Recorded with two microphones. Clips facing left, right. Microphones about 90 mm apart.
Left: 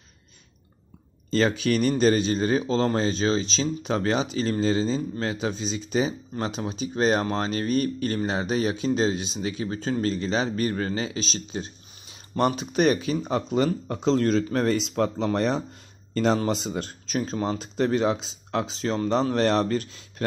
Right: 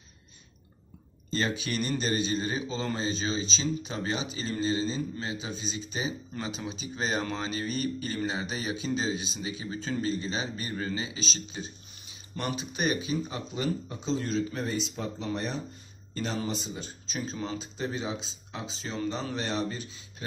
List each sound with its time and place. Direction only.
1.5 s speech: 80° left
6.4 s speech: 55° left (ahead or behind)
10.0 s speech: 70° left (ahead or behind)
13.8 s speech: 80° left
19.3 s speech: 85° left